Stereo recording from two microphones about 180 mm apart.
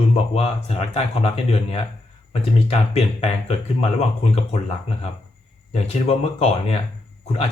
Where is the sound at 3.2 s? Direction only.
35° left (ahead or behind).